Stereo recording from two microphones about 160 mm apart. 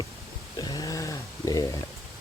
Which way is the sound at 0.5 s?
25° left (ahead or behind).